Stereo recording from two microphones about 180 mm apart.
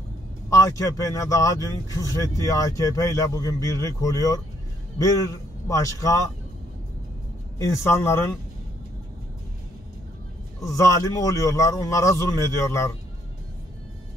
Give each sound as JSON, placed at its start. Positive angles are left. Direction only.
{"t": 0.5, "sound": "a man's voice", "side_deg": 20}
{"t": 7.5, "sound": "a man's voice", "side_deg": 15}
{"t": 10.6, "sound": "a man's voice", "side_deg": 20}